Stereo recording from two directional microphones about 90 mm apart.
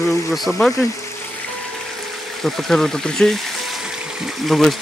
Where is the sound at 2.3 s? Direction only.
Centre (ahead or behind).